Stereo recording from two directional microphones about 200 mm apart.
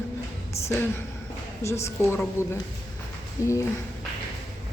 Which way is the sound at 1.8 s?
10° left (ahead or behind).